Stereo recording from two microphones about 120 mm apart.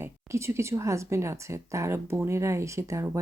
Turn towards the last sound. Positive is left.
turn(degrees=-25)  # may be behind; listen again after turning